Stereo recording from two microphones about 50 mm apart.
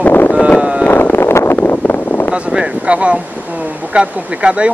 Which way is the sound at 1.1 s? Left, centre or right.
Left.